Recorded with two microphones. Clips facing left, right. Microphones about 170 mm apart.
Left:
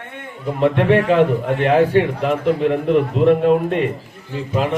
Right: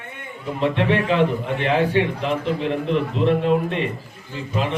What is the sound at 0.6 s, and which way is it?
A man's voice, 50° left (ahead or behind).